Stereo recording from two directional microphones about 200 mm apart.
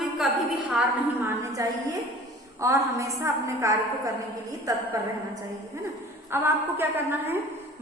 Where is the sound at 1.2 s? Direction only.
15° right (ahead or behind).